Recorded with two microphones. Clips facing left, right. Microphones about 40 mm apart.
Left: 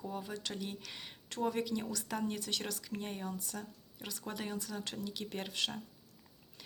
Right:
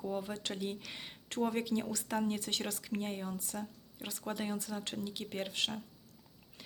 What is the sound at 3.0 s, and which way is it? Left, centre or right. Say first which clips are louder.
Speech: right 2 dB; centre.